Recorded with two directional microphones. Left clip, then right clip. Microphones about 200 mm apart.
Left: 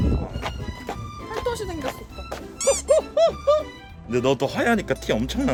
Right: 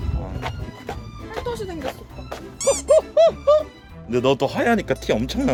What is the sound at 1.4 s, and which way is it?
Music, 50° left (ahead or behind).